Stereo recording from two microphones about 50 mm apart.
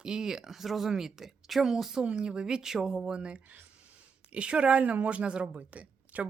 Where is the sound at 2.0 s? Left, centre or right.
Centre.